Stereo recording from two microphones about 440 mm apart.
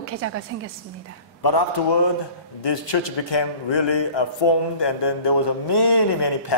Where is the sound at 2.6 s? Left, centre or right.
Left.